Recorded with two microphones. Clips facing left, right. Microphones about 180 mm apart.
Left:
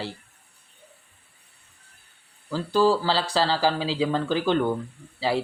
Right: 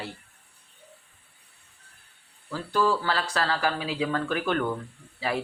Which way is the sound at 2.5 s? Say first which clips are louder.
Left 4 dB; 30° left (ahead or behind).